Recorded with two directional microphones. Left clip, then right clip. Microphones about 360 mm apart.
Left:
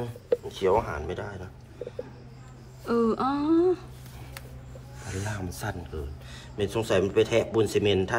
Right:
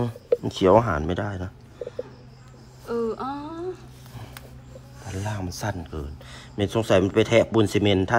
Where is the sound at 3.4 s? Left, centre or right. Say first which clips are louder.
Left 11 dB; centre.